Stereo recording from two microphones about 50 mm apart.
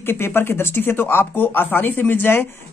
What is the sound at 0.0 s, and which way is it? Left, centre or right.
Speech, left.